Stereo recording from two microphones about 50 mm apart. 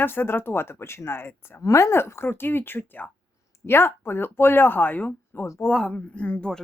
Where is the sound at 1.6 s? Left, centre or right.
Left.